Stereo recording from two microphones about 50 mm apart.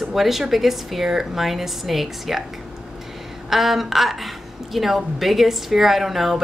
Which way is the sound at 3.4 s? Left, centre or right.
Centre.